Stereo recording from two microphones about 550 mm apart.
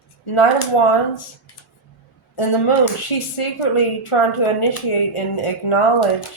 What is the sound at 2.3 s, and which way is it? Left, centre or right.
A woman's voice, left.